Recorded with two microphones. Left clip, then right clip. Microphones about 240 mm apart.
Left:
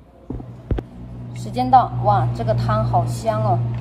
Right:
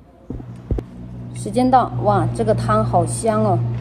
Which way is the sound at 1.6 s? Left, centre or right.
Right.